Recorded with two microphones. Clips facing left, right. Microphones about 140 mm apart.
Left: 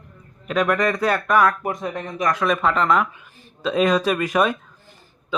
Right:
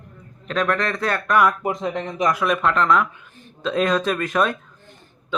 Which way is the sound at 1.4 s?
15° right (ahead or behind).